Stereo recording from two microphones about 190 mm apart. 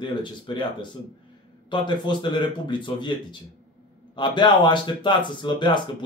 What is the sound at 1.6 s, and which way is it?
Speech, 25° left (ahead or behind).